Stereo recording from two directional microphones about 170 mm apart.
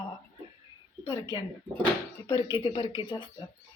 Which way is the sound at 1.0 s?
25° left (ahead or behind).